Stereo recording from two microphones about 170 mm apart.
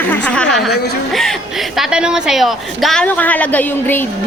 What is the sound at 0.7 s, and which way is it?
Speech, 75° left (ahead or behind).